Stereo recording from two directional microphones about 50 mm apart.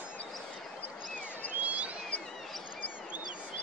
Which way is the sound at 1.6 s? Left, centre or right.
Right.